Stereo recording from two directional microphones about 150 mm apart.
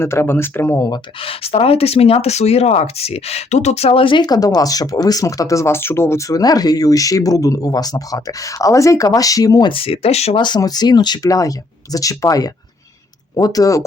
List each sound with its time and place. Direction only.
0.0 s speech: 15° left (ahead or behind)
1.2 s speech: 40° left (ahead or behind)
10.4 s speech: 30° left (ahead or behind)